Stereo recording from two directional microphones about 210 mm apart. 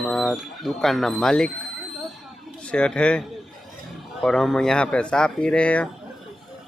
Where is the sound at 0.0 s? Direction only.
Centre (ahead or behind).